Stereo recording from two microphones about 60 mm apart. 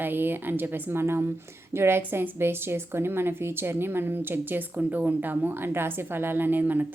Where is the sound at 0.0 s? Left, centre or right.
Right.